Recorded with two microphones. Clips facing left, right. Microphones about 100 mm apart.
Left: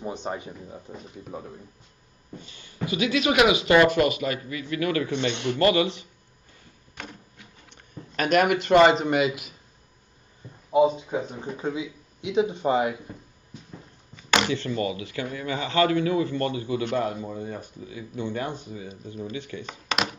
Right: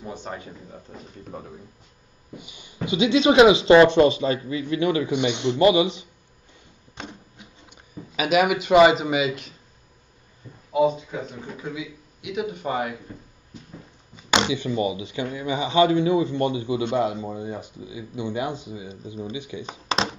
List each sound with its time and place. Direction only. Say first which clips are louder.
0.0 s speech: left 3 dB; 20° left (ahead or behind)
1.3 s speech: even; centre (ahead or behind)
2.3 s speech: right 2 dB; 15° right (ahead or behind)
7.0 s printer: right 3 dB; 20° right (ahead or behind)
7.7 s speech: right 1 dB; 5° right (ahead or behind)
10.7 s speech: left 1 dB; 25° left (ahead or behind)
14.1 s speech: right 1 dB; 20° right (ahead or behind)
19.9 s a sound: right 3 dB; 30° right (ahead or behind)